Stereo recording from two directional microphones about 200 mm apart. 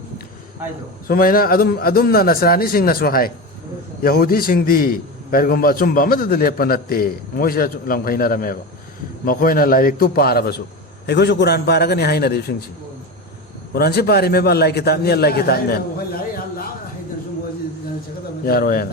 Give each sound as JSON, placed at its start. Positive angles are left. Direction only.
{"t": 1.0, "sound": "a man's voice", "side_deg": 45}
{"t": 13.7, "sound": "a man's voice", "side_deg": 50}
{"t": 18.4, "sound": "a man's voice", "side_deg": 50}